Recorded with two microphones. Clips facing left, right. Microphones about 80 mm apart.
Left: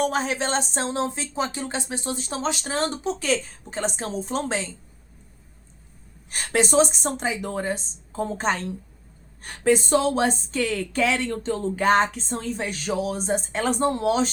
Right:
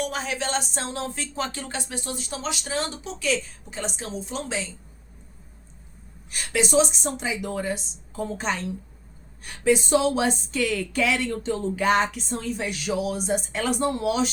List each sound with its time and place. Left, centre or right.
0.0 s a woman's voice: left
6.3 s a woman's voice: left